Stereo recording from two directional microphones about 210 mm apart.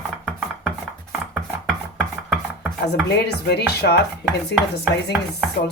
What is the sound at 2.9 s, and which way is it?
Speech, 50° left (ahead or behind).